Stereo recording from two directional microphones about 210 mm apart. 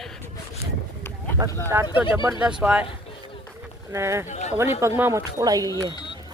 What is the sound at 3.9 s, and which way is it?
Speech, 15° right (ahead or behind).